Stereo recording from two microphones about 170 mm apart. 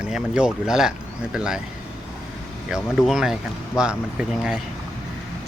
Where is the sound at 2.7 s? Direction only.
5° right (ahead or behind).